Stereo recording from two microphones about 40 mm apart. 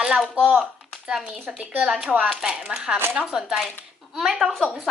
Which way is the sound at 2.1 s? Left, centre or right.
Centre.